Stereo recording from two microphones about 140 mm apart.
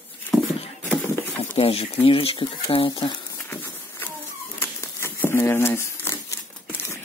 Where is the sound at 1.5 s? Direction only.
40° left (ahead or behind).